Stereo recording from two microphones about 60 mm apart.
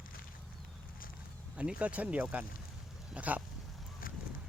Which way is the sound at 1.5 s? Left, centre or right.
Right.